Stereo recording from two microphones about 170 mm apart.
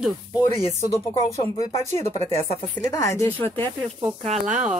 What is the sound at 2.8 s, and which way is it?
Speech, 20° left (ahead or behind).